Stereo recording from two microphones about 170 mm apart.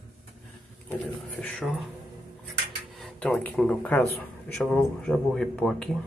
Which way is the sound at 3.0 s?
10° left (ahead or behind).